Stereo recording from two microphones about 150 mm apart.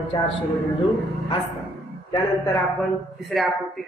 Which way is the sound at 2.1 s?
25° left (ahead or behind).